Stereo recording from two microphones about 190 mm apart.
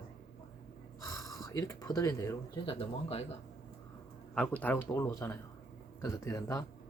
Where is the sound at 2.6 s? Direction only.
30° left (ahead or behind).